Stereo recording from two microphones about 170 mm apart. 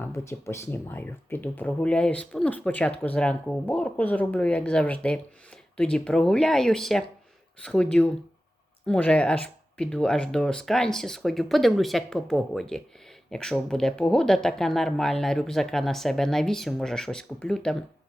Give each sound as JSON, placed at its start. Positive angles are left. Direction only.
{"t": 0.1, "sound": "speech", "side_deg": 15}